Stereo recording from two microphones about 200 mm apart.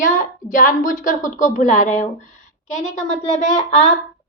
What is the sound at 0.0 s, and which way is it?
A woman's voice, 40° left (ahead or behind).